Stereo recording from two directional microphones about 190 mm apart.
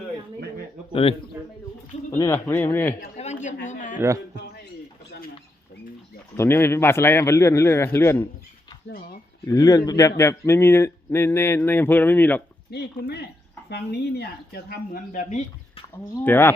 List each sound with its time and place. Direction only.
2.1 s a man's voice: 15° left (ahead or behind)
3.2 s a sound: 40° left (ahead or behind)
3.9 s a man's voice: 15° right (ahead or behind)
6.3 s a man's voice: 15° left (ahead or behind)
9.5 s a man's voice: 20° left (ahead or behind)
12.7 s speech: 60° left (ahead or behind); by 15.8 s 35° left (ahead or behind)
16.0 s a man's voice: 15° left (ahead or behind)